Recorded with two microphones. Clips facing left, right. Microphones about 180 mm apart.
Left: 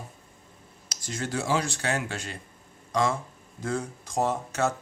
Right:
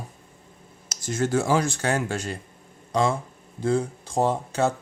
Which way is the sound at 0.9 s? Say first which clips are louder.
Right 8 dB; 50° right (ahead or behind).